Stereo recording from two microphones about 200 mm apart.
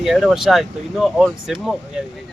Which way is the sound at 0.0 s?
Centre (ahead or behind).